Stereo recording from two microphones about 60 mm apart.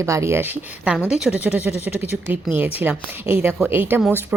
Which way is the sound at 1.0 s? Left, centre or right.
Centre.